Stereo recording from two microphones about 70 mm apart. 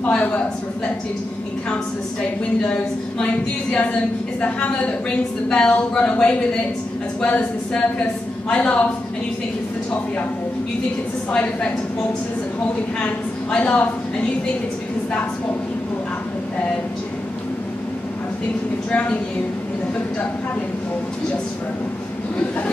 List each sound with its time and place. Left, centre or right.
0.0 s a woman's voice: left
2.6 s speech: centre
4.4 s a woman's voice: centre
11.3 s a woman's voice: left
13.0 s a woman's voice: centre
18.9 s a woman's voice: centre